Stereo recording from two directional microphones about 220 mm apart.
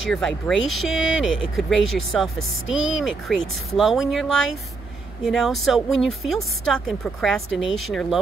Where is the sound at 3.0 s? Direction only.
Centre (ahead or behind).